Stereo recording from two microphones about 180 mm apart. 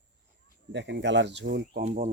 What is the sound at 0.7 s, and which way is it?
Speech, 85° right.